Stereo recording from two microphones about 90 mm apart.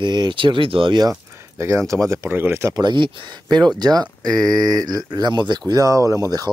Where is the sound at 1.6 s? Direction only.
30° right (ahead or behind).